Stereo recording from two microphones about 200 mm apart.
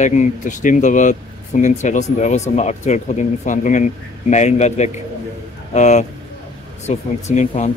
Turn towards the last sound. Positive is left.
turn(degrees=35)  # may be behind; listen again after turning